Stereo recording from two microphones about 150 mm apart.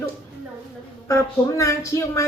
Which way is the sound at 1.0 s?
20° left (ahead or behind).